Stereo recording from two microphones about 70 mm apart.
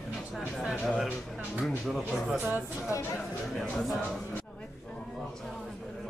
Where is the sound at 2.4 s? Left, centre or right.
Right.